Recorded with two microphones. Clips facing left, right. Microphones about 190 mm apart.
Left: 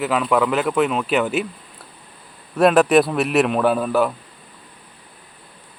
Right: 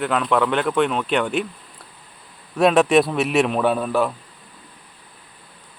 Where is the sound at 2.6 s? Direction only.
Centre (ahead or behind).